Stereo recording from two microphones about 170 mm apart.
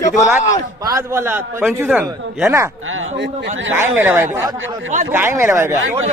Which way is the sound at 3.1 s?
90° right.